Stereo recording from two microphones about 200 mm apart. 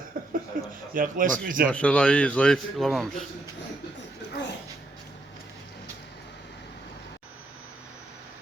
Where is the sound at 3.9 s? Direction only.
60° left (ahead or behind).